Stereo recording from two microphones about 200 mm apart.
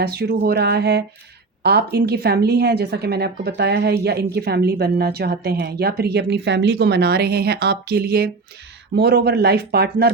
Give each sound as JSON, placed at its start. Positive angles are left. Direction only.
{"t": 0.0, "sound": "speech", "side_deg": -55}